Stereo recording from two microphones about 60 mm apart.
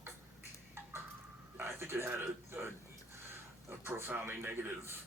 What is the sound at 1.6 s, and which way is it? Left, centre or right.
A man's voice, right.